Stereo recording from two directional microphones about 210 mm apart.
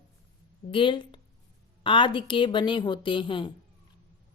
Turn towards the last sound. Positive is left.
turn(degrees=25)  # may be behind; listen again after turning